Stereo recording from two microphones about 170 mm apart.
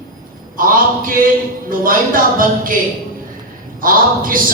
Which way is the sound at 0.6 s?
55° right (ahead or behind).